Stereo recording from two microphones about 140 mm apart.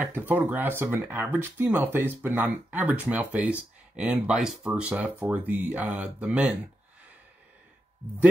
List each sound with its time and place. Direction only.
0.0 s speech: 10° right (ahead or behind)